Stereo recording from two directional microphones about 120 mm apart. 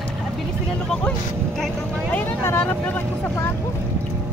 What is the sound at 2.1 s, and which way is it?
Speech, 15° left (ahead or behind).